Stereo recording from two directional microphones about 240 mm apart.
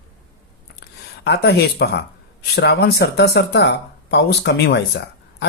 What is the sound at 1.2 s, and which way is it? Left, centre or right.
Speech, left.